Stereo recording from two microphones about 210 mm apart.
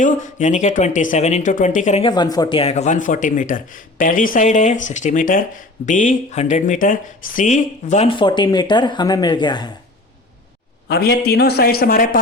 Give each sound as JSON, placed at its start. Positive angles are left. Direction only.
{"t": 0.0, "sound": "speech", "side_deg": 35}
{"t": 2.0, "sound": "speech", "side_deg": 20}
{"t": 10.8, "sound": "a man's voice", "side_deg": 50}